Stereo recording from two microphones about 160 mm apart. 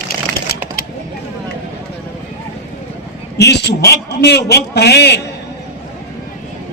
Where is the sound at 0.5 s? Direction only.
70° left (ahead or behind).